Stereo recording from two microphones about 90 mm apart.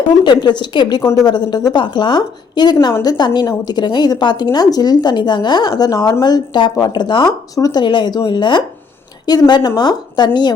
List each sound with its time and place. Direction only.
0.3 s speech: 55° left (ahead or behind)
1.8 s speech: 60° left (ahead or behind)
7.5 s speech: 45° left (ahead or behind)